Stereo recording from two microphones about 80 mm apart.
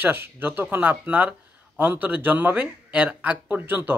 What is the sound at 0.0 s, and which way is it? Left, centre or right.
Speech, right.